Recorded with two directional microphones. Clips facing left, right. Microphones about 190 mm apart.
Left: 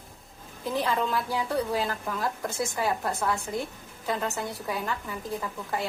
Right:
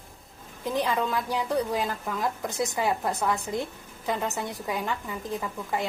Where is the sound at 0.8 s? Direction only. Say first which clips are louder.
Even; 15° right (ahead or behind).